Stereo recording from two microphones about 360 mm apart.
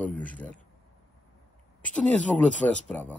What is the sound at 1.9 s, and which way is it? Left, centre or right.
Speech, centre.